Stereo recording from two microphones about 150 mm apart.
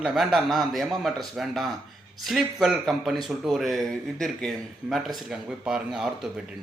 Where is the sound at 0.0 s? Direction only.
Centre (ahead or behind).